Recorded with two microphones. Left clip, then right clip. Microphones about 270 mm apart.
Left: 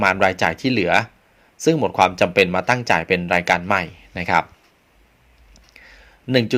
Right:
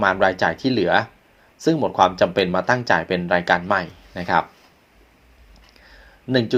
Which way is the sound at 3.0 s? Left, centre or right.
Left.